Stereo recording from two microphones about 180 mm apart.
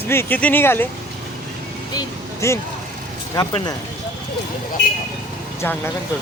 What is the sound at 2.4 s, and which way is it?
Speech, 15° left (ahead or behind).